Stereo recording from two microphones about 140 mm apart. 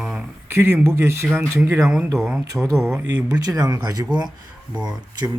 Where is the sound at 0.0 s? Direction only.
10° right (ahead or behind).